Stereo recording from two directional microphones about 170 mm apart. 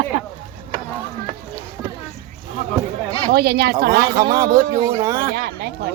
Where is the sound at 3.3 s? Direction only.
70° right (ahead or behind).